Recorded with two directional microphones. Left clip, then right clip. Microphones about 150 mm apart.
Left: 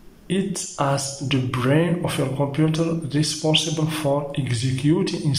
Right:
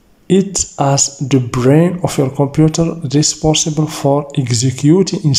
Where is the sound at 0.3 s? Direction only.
35° right (ahead or behind).